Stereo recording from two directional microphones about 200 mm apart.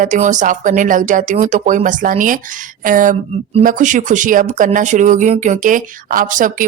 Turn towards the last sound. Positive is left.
turn(degrees=-40)  # may be behind; listen again after turning